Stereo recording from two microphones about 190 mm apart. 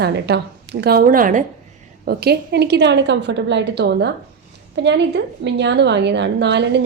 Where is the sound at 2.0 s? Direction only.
55° right (ahead or behind).